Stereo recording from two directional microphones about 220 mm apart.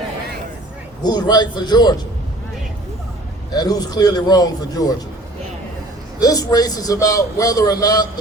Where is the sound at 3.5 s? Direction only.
20° left (ahead or behind).